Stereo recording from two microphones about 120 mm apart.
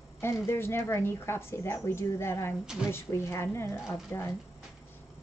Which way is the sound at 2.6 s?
5° right (ahead or behind).